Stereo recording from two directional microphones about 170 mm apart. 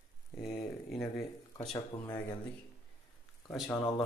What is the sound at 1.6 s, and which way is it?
Speech, 25° left (ahead or behind).